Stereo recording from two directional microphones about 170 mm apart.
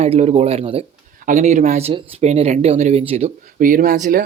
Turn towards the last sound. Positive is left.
turn(degrees=-55)  # may be behind; listen again after turning